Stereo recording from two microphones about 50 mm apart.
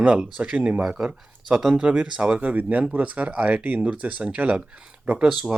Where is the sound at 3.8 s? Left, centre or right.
Right.